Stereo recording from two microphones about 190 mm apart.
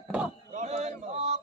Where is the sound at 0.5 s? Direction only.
40° right (ahead or behind).